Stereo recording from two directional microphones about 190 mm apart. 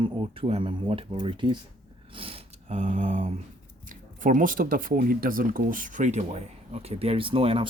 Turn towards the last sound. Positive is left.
turn(degrees=-30)  # may be behind; listen again after turning